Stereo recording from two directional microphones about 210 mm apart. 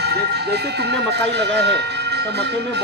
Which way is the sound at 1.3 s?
55° right (ahead or behind).